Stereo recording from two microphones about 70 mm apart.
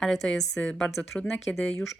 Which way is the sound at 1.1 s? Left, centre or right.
Left.